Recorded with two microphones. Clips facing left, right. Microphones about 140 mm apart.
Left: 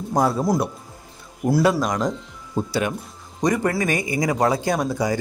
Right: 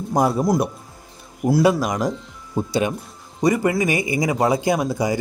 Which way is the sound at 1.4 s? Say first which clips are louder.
Right 2 dB; 5° right (ahead or behind).